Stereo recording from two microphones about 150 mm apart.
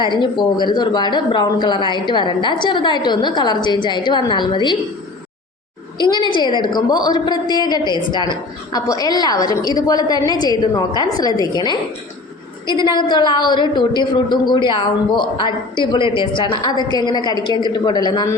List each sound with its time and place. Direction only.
0.0 s speech: 30° left (ahead or behind)
6.0 s speech: 30° left (ahead or behind)
12.8 s a woman's voice: 30° left (ahead or behind)